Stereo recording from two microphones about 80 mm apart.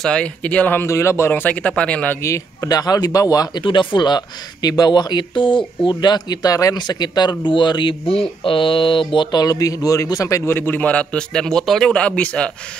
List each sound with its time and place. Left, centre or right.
0.0 s a man's voice: centre
0.8 s speech: left
1.3 s a man's voice: left
2.2 s speech: left
3.6 s speech: left
8.5 s mantra: left
9.4 s a man's voice: left; by 11.9 s centre
11.9 s a man's voice: centre